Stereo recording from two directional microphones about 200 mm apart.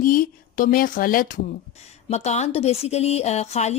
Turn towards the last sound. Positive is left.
turn(degrees=35)  # may be behind; listen again after turning